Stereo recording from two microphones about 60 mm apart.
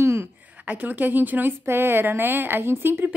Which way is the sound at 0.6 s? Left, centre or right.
Right.